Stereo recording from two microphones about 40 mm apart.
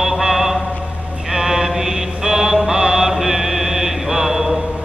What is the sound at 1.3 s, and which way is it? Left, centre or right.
Mantra, centre.